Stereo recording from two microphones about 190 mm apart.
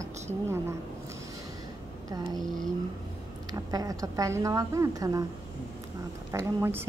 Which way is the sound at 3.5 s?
20° right (ahead or behind).